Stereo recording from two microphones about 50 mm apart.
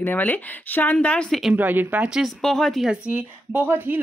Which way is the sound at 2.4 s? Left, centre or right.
Centre.